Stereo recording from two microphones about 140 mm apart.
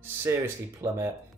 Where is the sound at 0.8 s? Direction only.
20° right (ahead or behind).